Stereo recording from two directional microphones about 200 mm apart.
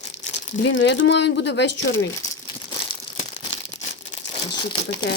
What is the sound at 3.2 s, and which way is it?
Crumpling, 35° left (ahead or behind).